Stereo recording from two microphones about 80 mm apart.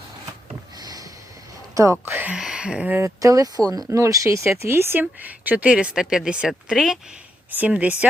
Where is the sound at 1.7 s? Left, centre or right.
Right.